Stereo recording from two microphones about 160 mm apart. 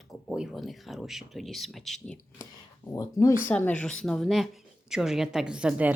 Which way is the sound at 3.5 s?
10° left (ahead or behind).